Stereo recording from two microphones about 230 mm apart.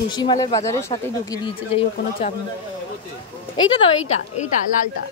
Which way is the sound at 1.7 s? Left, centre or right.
Left.